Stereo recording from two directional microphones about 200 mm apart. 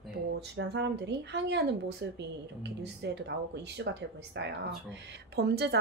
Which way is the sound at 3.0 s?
60° right (ahead or behind).